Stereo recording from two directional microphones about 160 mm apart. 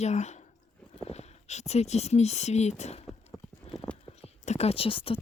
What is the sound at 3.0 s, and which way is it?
Clip-clop, centre (ahead or behind).